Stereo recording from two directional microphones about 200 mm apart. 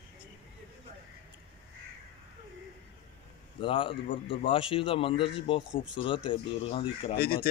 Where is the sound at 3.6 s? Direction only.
25° left (ahead or behind).